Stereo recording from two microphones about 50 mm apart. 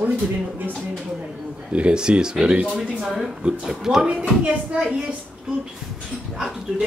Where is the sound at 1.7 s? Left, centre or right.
Right.